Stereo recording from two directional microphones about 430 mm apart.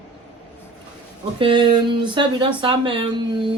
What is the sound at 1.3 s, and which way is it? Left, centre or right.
Speech, centre.